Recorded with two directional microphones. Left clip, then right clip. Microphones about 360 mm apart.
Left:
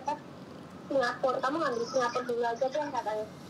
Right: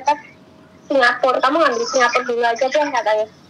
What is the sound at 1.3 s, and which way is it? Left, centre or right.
Speech, right.